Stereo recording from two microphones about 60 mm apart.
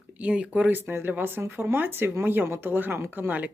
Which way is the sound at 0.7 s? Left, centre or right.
Right.